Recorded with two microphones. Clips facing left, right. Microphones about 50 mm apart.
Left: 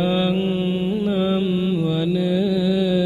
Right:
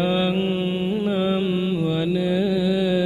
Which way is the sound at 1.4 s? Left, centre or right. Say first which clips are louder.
Left 2 dB; centre.